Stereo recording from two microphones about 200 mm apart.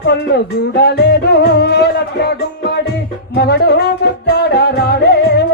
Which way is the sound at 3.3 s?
55° left (ahead or behind).